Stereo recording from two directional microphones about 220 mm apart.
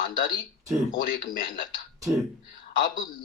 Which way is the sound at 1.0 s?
40° left (ahead or behind).